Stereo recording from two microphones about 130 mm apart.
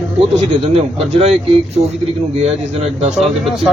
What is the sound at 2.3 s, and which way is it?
Speech, 55° right (ahead or behind).